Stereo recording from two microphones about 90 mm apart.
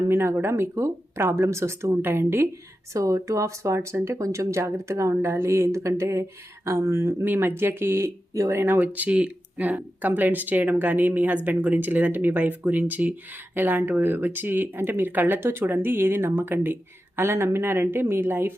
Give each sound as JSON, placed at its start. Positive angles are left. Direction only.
{"t": 0.1, "sound": "speech", "side_deg": -30}